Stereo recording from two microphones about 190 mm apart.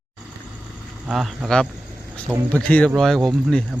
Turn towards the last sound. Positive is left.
turn(degrees=0)  # may be behind; listen again after turning